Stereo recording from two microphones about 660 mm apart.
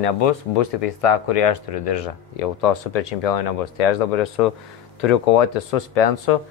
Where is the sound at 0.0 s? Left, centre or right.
Left.